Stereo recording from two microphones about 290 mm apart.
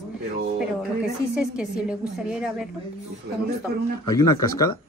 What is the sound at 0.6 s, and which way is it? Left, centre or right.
A woman's voice, centre.